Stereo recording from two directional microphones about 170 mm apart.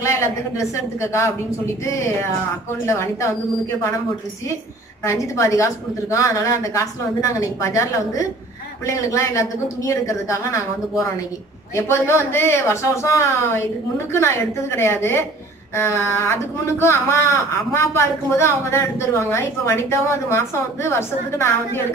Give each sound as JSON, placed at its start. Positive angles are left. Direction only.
{"t": 0.0, "sound": "speech", "side_deg": 15}
{"t": 2.8, "sound": "speech", "side_deg": 15}
{"t": 5.0, "sound": "a woman's voice", "side_deg": 15}